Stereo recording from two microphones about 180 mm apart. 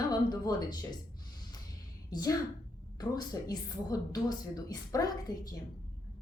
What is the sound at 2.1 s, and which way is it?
A woman's voice, 20° left (ahead or behind).